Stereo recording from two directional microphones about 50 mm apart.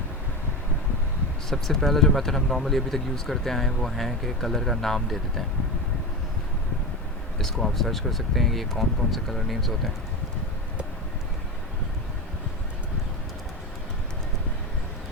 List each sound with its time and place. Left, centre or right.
1.5 s speech: centre
7.3 s speech: centre